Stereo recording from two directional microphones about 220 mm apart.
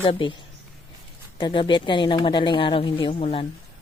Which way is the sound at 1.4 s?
20° left (ahead or behind).